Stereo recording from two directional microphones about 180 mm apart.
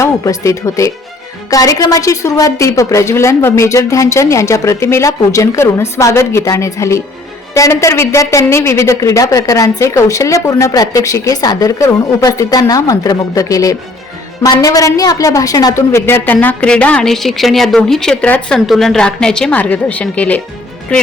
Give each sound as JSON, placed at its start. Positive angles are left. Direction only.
{"t": 0.0, "sound": "a woman's voice", "side_deg": 15}